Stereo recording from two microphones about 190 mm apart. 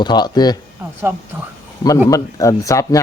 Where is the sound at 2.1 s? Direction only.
15° left (ahead or behind).